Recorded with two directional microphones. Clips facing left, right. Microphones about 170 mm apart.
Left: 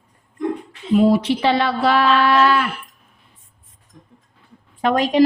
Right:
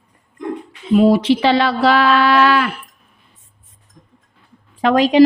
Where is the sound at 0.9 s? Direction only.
90° right.